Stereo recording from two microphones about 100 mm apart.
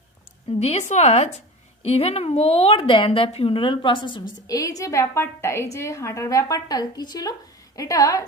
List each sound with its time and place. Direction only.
0.6 s a woman's voice: 90° left; by 4.2 s 55° left (ahead or behind)
4.5 s a woman's voice: 35° left (ahead or behind)